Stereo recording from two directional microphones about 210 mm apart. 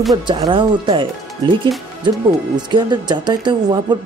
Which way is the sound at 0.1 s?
20° right (ahead or behind).